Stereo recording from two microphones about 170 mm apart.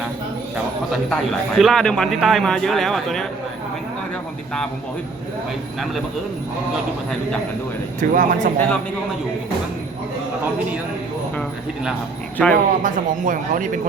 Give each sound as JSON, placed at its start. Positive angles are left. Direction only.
{"t": 1.1, "sound": "a man's voice", "side_deg": 0}
{"t": 8.1, "sound": "speech", "side_deg": -55}
{"t": 8.5, "sound": "speech", "side_deg": 10}
{"t": 12.4, "sound": "a man's voice", "side_deg": 5}
{"t": 12.8, "sound": "speech", "side_deg": -50}